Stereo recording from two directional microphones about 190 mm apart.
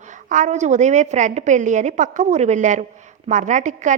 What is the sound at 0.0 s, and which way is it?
A woman's voice, 40° right (ahead or behind).